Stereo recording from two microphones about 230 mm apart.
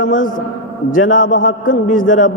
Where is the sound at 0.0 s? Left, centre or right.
Left.